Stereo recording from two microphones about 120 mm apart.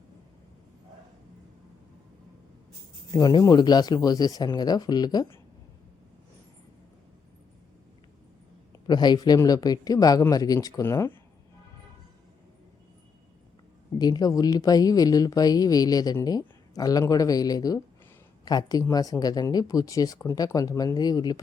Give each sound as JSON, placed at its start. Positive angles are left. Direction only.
{"t": 3.1, "sound": "speech", "side_deg": 35}
{"t": 8.9, "sound": "speech", "side_deg": 35}
{"t": 14.0, "sound": "speech", "side_deg": 35}